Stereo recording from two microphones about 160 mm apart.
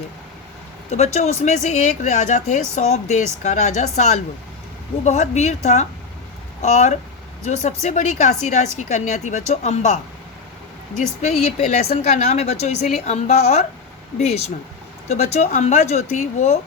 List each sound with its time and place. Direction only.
0.9 s speech: 45° left (ahead or behind)